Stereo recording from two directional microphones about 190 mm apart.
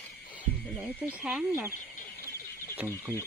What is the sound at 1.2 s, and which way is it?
Speech, 10° right (ahead or behind).